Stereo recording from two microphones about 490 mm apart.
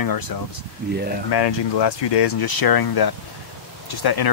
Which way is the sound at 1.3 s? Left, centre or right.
Left.